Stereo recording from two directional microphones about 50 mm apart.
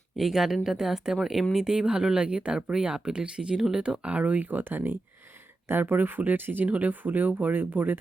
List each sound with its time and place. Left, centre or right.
0.2 s speech: centre; by 6.7 s right
6.7 s speech: right